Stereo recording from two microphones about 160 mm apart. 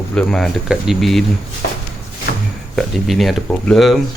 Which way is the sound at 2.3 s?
80° left.